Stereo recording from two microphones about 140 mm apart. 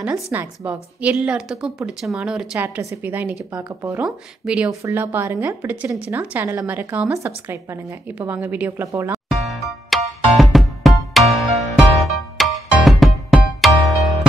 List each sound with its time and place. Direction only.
0.0 s speech: 10° right (ahead or behind)
4.0 s speech: 5° right (ahead or behind)
9.3 s music: centre (ahead or behind)